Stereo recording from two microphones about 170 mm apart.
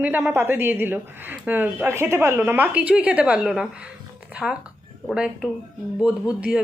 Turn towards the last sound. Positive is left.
turn(degrees=-5)  # may be behind; listen again after turning